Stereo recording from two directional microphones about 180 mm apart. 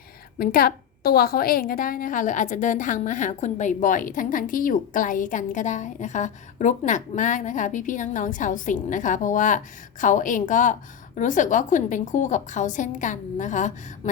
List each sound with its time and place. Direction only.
0.3 s a woman's voice: 55° left (ahead or behind)